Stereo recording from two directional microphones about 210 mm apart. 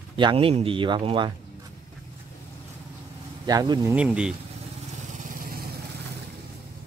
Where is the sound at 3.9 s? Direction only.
5° right (ahead or behind).